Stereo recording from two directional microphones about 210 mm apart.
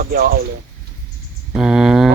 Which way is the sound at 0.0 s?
45° right (ahead or behind).